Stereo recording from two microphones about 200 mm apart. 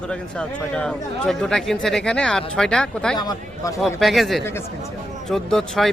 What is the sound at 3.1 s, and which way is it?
Speech, 20° left (ahead or behind).